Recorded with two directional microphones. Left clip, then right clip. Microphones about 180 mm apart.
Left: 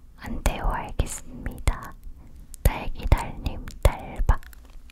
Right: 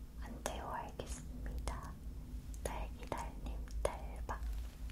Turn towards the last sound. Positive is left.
turn(degrees=55)  # may be behind; listen again after turning